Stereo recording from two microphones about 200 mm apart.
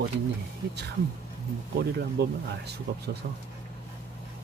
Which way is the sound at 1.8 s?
55° right (ahead or behind).